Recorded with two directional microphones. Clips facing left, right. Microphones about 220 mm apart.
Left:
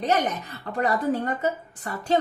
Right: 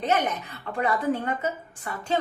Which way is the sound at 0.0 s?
35° left (ahead or behind).